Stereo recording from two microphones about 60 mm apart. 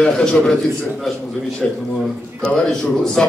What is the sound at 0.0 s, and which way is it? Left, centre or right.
Speech, centre.